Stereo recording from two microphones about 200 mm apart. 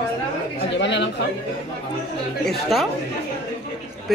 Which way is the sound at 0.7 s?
60° left (ahead or behind).